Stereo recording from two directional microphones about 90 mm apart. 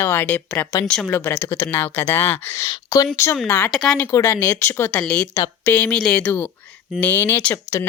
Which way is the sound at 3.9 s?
25° left (ahead or behind).